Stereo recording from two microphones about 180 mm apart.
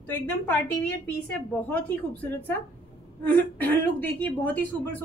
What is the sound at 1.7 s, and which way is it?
A woman's voice, 10° left (ahead or behind).